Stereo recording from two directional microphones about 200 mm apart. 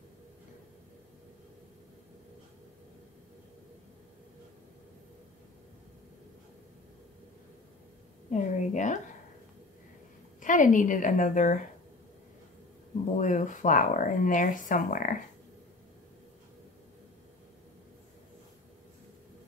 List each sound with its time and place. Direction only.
8.3 s a sound: 35° left (ahead or behind)
10.4 s speech: 40° left (ahead or behind)
13.2 s speech: 40° left (ahead or behind)